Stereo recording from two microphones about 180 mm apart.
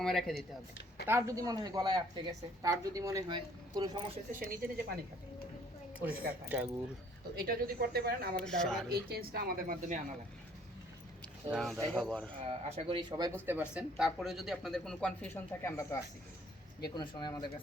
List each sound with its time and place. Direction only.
0.0 s speech: centre (ahead or behind)
1.0 s speech: 15° right (ahead or behind)
4.3 s speech: 50° right (ahead or behind)
6.0 s speech: 10° right (ahead or behind)
7.3 s speech: 55° right (ahead or behind)
8.4 s speech: 5° left (ahead or behind)
8.9 s speech: 60° right (ahead or behind)
11.5 s speech: centre (ahead or behind)
12.3 s speech: 35° right (ahead or behind)
13.3 s speech: 10° right (ahead or behind); by 17.4 s 25° left (ahead or behind)